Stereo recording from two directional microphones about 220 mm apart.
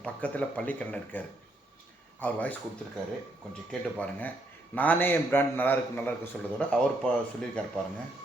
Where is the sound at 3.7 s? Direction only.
5° left (ahead or behind).